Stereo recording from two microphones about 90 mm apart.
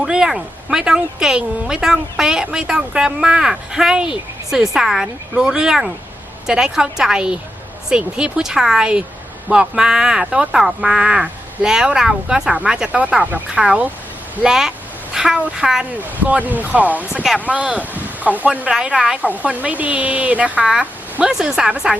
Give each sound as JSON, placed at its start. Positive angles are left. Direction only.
{"t": 0.0, "sound": "speech", "side_deg": -5}
{"t": 16.0, "sound": "speech", "side_deg": -20}